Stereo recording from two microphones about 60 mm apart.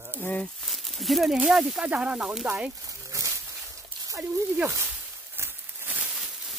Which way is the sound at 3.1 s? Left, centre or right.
Right.